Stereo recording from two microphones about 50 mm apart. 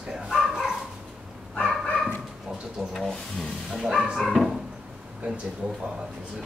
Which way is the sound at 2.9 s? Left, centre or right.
Centre.